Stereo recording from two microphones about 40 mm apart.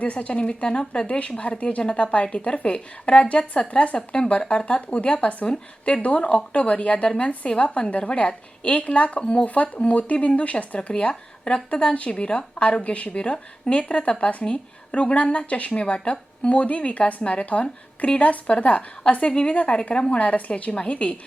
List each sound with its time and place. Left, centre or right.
0.0 s speech: left
3.9 s speech: left
14.4 s speech: left
19.3 s speech: left
19.5 s speech: left